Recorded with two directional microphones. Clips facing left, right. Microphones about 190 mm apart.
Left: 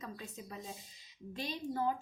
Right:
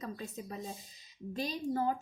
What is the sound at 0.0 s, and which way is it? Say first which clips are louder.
Speech: right 5 dB; 40° right (ahead or behind).